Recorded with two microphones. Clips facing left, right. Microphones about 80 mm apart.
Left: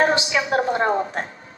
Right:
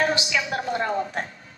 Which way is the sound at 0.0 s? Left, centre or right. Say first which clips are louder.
Left 4 dB; left.